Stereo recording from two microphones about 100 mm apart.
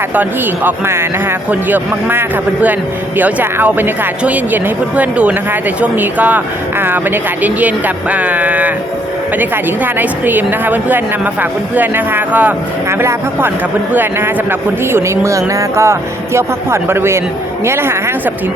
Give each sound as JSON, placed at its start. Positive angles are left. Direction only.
{"t": 0.1, "sound": "a woman's voice", "side_deg": -20}